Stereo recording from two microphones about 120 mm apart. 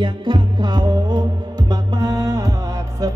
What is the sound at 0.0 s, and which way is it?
Music, 40° right (ahead or behind).